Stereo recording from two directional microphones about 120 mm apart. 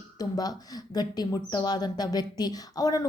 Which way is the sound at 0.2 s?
35° left (ahead or behind).